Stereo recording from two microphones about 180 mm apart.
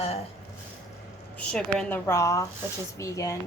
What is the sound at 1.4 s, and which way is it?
A woman's voice, 5° left (ahead or behind).